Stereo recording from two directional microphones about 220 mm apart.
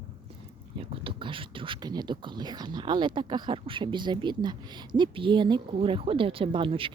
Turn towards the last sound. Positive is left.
turn(degrees=-25)  # may be behind; listen again after turning